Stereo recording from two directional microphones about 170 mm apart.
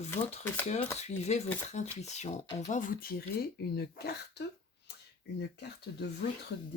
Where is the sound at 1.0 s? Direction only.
40° left (ahead or behind); by 4.4 s 75° left (ahead or behind).